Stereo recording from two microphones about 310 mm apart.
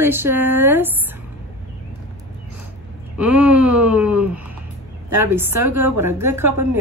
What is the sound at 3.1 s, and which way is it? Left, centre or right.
Wail, centre.